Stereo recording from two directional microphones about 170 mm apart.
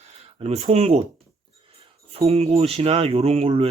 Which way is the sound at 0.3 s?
40° right (ahead or behind).